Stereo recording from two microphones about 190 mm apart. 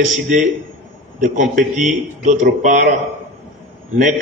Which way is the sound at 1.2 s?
45° right (ahead or behind).